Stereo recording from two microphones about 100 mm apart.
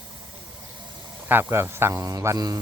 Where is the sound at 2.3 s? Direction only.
40° right (ahead or behind).